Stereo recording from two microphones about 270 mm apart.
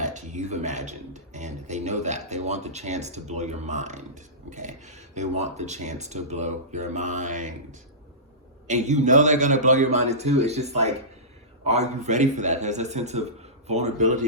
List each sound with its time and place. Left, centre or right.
0.0 s a man's voice: right